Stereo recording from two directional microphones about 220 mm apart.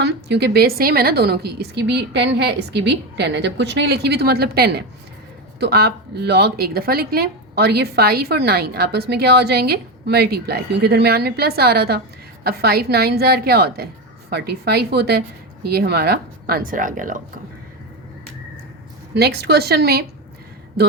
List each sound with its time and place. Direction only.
0.0 s a woman's voice: 50° right (ahead or behind)
19.1 s a woman's voice: 45° right (ahead or behind)